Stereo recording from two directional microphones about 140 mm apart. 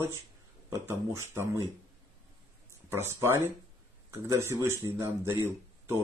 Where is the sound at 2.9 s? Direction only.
15° right (ahead or behind).